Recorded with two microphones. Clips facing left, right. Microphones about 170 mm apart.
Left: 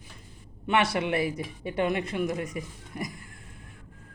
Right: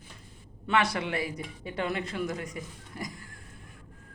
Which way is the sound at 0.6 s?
20° left (ahead or behind).